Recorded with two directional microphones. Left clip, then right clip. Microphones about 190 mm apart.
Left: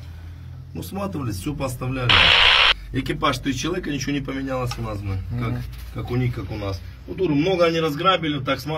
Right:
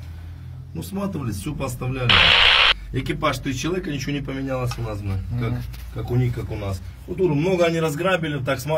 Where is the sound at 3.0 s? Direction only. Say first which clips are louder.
Left 1 dB; 55° left (ahead or behind).